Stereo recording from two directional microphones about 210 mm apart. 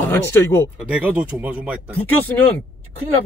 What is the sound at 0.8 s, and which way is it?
Speech, 5° right (ahead or behind).